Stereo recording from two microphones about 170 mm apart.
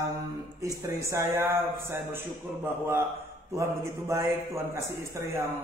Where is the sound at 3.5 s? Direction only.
15° right (ahead or behind).